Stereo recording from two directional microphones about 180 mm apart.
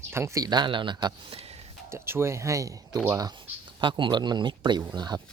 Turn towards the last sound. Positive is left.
turn(degrees=-25)  # may be behind; listen again after turning